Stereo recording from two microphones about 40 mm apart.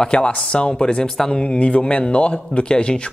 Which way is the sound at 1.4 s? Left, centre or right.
Left.